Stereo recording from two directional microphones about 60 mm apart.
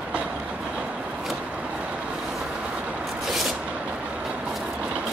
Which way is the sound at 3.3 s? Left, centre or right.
Centre.